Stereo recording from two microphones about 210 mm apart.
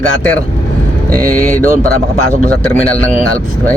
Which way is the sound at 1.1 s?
40° right (ahead or behind).